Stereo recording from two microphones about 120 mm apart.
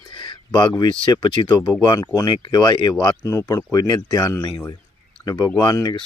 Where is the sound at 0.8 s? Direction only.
40° left (ahead or behind).